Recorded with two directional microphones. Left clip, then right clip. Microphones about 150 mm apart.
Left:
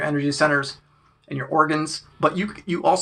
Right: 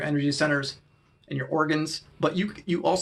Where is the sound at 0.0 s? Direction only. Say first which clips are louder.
Left 5 dB; 30° right (ahead or behind).